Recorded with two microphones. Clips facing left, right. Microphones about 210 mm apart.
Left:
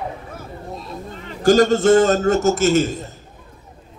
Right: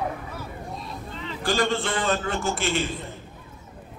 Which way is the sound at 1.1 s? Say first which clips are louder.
Left 11 dB; 45° left (ahead or behind).